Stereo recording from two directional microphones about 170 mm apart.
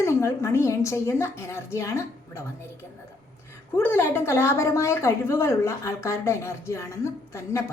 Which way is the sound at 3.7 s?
15° left (ahead or behind).